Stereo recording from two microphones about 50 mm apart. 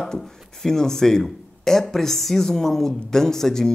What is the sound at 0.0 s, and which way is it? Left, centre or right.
Speech, centre.